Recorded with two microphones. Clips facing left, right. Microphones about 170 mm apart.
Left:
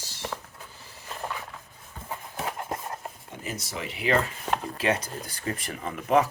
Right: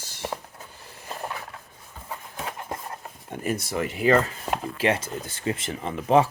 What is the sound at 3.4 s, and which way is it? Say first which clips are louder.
Speech: right 8 dB; 55° right (ahead or behind).